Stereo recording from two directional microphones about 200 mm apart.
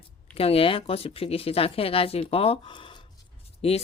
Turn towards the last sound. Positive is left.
turn(degrees=30)  # may be behind; listen again after turning